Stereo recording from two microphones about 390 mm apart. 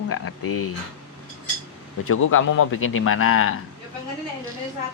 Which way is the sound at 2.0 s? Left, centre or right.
Left.